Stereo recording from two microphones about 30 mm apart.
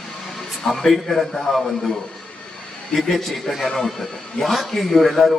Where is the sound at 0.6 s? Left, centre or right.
Centre.